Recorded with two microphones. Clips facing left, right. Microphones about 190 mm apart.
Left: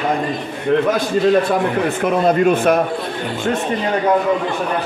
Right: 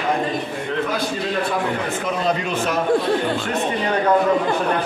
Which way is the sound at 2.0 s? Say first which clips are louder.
Left 10 dB; 50° left (ahead or behind).